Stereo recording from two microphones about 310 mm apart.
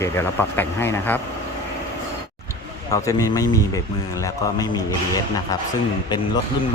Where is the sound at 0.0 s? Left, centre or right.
Centre.